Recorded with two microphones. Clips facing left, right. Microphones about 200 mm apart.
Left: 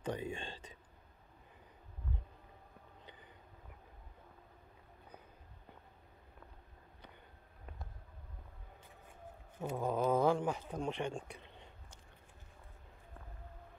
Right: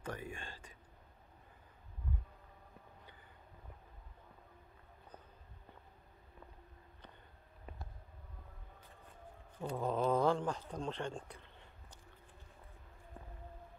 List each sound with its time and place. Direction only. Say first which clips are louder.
0.0 s whispering: left 5 dB; 20° left (ahead or behind)
9.6 s speech: left 1 dB; 5° left (ahead or behind)